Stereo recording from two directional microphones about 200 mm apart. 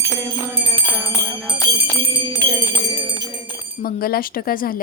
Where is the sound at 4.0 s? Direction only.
45° left (ahead or behind).